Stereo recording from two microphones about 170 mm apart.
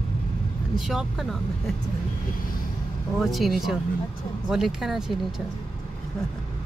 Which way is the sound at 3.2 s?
Centre (ahead or behind).